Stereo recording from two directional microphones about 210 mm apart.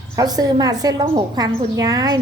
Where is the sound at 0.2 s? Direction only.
20° right (ahead or behind).